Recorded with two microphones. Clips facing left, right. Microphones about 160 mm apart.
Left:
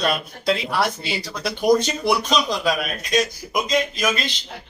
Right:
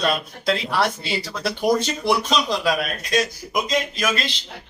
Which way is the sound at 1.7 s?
Centre (ahead or behind).